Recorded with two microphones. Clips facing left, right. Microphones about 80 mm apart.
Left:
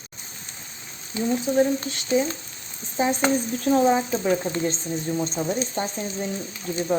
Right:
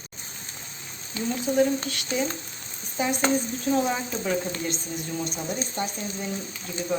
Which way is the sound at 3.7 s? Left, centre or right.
Left.